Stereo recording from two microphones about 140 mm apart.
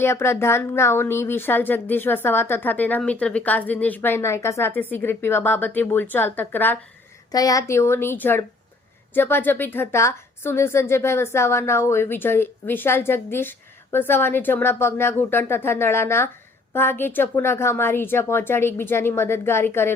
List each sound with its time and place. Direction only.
0.0 s a woman's voice: 20° left (ahead or behind)
7.3 s a woman's voice: 25° left (ahead or behind)